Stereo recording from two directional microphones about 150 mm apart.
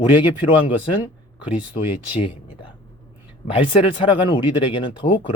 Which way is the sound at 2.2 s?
35° left (ahead or behind).